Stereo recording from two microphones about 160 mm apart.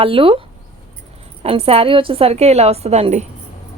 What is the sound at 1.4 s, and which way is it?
Speech, 35° right (ahead or behind).